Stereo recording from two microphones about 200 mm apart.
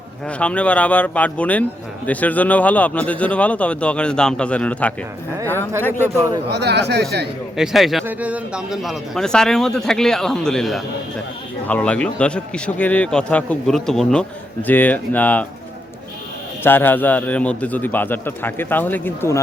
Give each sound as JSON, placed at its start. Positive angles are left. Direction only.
{"t": 0.3, "sound": "speech", "side_deg": 5}
{"t": 6.0, "sound": "a man's voice", "side_deg": -15}
{"t": 6.5, "sound": "speech", "side_deg": -55}
{"t": 7.5, "sound": "speech", "side_deg": 0}
{"t": 16.6, "sound": "speech", "side_deg": 10}